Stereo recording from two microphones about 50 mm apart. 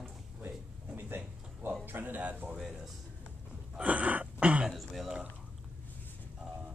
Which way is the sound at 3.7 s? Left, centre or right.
Right.